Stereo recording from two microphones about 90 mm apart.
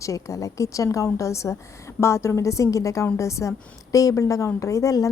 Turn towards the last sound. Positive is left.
turn(degrees=40)  # may be behind; listen again after turning